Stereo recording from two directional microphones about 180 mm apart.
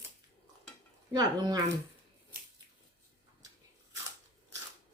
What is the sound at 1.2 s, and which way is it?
Speech, 20° right (ahead or behind).